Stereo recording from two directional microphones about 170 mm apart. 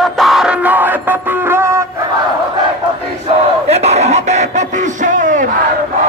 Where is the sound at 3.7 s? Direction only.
40° right (ahead or behind).